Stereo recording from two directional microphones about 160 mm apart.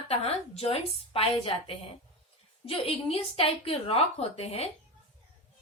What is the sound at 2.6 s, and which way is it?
A woman's voice, 35° left (ahead or behind).